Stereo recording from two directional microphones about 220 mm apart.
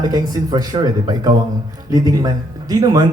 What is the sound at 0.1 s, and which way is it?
A man's voice, 15° right (ahead or behind).